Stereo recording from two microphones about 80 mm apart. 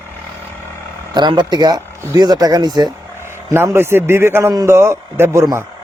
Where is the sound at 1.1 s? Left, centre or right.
Right.